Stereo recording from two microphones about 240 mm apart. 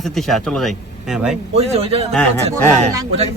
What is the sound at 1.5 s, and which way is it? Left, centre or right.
Speech, right.